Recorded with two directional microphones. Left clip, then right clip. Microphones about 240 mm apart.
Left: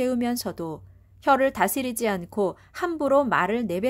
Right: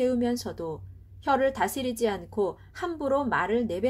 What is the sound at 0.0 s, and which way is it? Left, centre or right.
A woman's voice, left.